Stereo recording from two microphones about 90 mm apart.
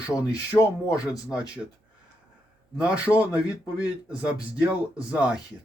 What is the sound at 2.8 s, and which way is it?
Speech, 15° right (ahead or behind).